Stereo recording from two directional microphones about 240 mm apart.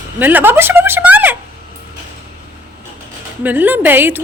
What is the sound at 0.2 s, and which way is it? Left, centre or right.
A woman's voice, centre.